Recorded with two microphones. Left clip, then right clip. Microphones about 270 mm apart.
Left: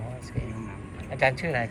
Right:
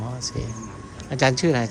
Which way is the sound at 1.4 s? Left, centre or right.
Right.